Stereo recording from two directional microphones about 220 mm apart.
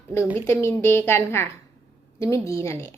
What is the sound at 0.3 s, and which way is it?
A woman's voice, 15° left (ahead or behind).